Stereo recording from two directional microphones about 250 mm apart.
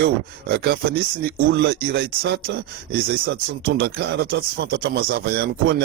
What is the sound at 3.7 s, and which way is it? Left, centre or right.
Speech, right.